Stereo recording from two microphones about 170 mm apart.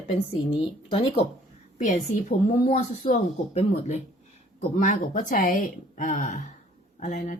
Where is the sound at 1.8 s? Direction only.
45° left (ahead or behind).